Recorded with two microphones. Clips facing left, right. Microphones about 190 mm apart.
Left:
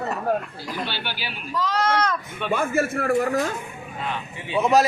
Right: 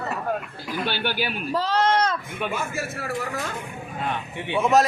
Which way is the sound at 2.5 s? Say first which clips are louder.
Left 7 dB; 55° left (ahead or behind).